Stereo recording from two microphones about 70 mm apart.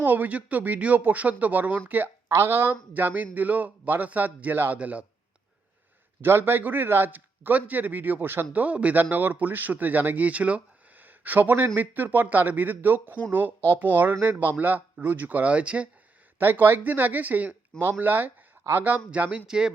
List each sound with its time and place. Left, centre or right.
0.0 s a man's voice: right
2.3 s a man's voice: right; by 5.0 s centre
6.2 s a man's voice: right
16.4 s a man's voice: right
18.9 s a man's voice: right
19.5 s speech: centre